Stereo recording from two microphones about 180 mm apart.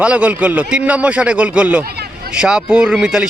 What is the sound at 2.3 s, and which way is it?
Speech, 5° right (ahead or behind).